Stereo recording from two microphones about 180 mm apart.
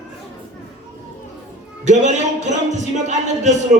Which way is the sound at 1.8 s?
40° right (ahead or behind).